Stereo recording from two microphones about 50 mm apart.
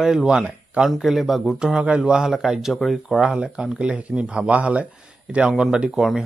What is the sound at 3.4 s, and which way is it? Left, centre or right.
Speech, centre.